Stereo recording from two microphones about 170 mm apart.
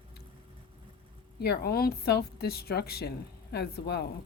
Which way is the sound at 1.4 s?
70° left (ahead or behind).